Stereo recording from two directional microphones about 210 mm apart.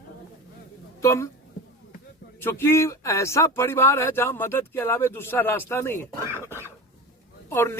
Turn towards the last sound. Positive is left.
turn(degrees=10)  # may be behind; listen again after turning